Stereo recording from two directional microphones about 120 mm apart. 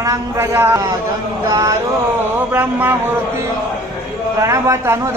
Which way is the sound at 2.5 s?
15° right (ahead or behind).